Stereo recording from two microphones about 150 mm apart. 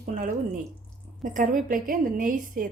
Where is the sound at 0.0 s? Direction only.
65° right (ahead or behind).